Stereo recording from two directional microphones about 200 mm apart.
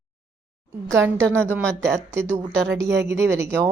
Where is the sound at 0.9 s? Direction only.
15° right (ahead or behind).